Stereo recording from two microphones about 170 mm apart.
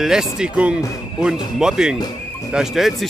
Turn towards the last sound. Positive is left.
turn(degrees=0)  # may be behind; listen again after turning